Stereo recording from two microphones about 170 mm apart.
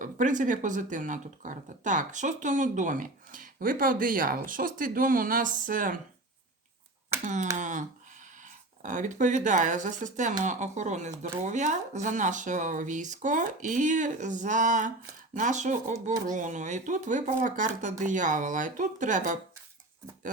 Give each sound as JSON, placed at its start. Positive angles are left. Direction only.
{"t": 0.0, "sound": "speech", "side_deg": -50}
{"t": 7.1, "sound": "a sound", "side_deg": -15}
{"t": 7.5, "sound": "speech", "side_deg": -45}